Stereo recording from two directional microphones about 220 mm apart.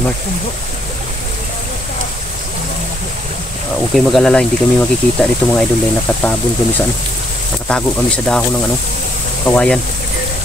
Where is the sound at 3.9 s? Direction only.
Centre (ahead or behind).